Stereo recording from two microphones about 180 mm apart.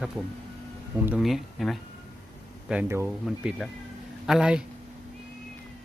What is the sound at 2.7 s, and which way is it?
Speech, 10° right (ahead or behind).